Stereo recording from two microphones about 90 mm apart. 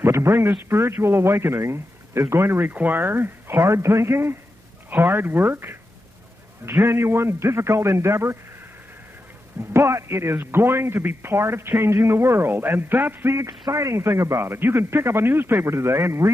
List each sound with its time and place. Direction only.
0.0 s a man's voice: 30° right (ahead or behind)
9.7 s a man's voice: 30° right (ahead or behind)